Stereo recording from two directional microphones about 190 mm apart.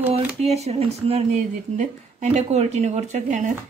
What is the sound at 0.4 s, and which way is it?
Speech, 35° right (ahead or behind).